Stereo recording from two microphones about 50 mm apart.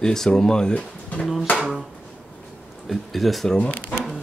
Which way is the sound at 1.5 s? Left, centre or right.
Centre.